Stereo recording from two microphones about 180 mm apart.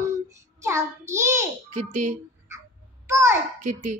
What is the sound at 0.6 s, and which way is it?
Speech, 15° right (ahead or behind).